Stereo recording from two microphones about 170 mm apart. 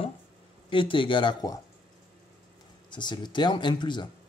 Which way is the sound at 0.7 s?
30° left (ahead or behind).